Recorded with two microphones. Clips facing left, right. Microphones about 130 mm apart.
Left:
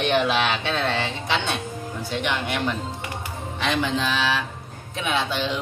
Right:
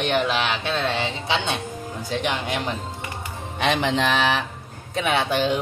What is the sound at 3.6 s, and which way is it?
A woman's voice, 70° right (ahead or behind).